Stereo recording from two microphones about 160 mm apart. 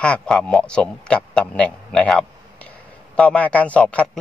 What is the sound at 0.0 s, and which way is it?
A man's voice, 5° left (ahead or behind).